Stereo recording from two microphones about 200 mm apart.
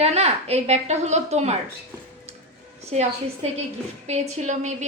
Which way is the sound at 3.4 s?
30° right (ahead or behind).